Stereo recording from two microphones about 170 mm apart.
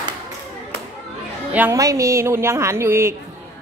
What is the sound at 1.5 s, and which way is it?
A woman's voice, 15° right (ahead or behind).